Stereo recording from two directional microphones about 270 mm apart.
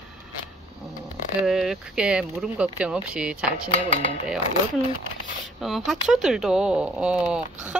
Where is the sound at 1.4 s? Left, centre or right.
Centre.